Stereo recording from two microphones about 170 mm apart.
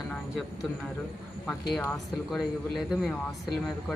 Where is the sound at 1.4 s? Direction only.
5° left (ahead or behind).